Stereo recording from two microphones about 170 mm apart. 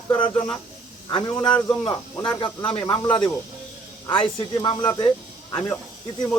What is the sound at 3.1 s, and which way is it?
Speech, 25° left (ahead or behind).